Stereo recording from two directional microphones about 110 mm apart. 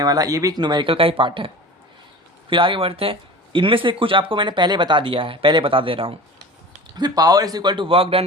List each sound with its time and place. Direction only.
0.0 s speech: 35° right (ahead or behind)
0.6 s speech: 45° right (ahead or behind)
2.5 s speech: 50° right (ahead or behind)
6.9 s speech: 35° right (ahead or behind); by 8.2 s 60° right (ahead or behind)